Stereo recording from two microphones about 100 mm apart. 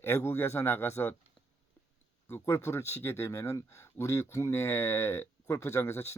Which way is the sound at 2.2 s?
25° left (ahead or behind).